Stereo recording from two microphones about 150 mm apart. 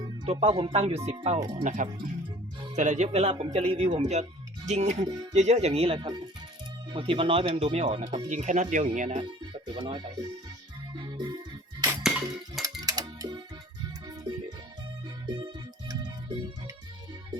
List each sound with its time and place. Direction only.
0.3 s speech: 40° right (ahead or behind)
1.4 s speech: 25° right (ahead or behind)
1.6 s speech: 60° right (ahead or behind); by 8.2 s 35° right (ahead or behind)
8.3 s speech: 55° right (ahead or behind)
9.2 s speech: 30° right (ahead or behind)
10.9 s music: 30° right (ahead or behind)
12.0 s a sound: centre (ahead or behind)
12.8 s music: 25° right (ahead or behind)
15.9 s music: 30° right (ahead or behind)